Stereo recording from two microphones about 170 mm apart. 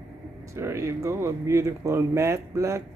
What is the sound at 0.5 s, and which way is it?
Speech, 15° right (ahead or behind).